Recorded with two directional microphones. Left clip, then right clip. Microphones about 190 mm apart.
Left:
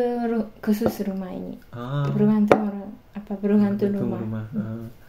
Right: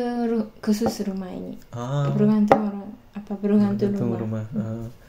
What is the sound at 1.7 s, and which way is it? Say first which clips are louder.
Speech: right 3 dB; 35° right (ahead or behind).